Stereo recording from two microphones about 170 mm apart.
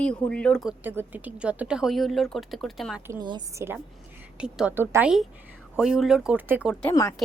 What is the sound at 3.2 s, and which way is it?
A woman's voice, 20° right (ahead or behind).